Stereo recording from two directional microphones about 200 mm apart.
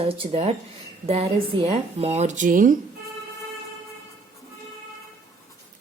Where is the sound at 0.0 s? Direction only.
30° right (ahead or behind).